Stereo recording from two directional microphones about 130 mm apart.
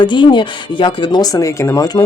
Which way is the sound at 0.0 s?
40° left (ahead or behind).